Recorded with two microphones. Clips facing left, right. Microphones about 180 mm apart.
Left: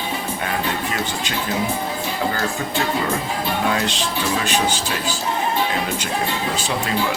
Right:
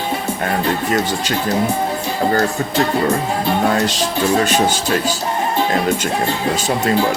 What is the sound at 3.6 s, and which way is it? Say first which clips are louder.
Music: right 5 dB; 40° right (ahead or behind).